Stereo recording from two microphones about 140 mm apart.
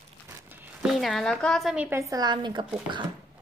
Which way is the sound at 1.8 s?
20° right (ahead or behind).